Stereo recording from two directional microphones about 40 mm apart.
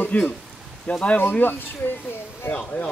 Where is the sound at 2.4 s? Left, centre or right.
Left.